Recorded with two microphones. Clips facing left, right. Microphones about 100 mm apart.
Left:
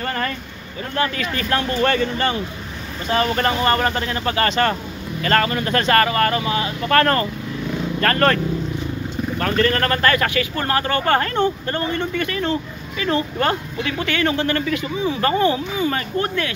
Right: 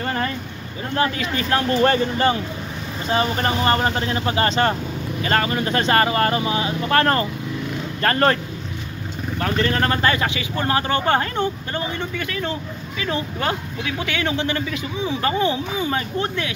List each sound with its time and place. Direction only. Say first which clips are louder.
0.0 s vehicle: even; 15° right (ahead or behind)
0.9 s speech: right 1 dB; 25° right (ahead or behind)
9.4 s speech: left 2 dB; 15° right (ahead or behind)